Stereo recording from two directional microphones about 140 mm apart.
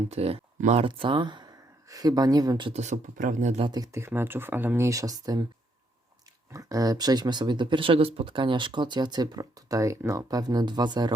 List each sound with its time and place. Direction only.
0.1 s speech: 45° right (ahead or behind)
0.9 s speech: 35° right (ahead or behind)
2.7 s speech: 55° right (ahead or behind)
3.6 s speech: 30° right (ahead or behind)
3.9 s speech: 15° right (ahead or behind)
6.5 s speech: 25° right (ahead or behind)